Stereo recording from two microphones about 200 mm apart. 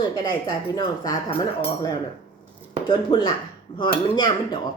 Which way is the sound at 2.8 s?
25° left (ahead or behind).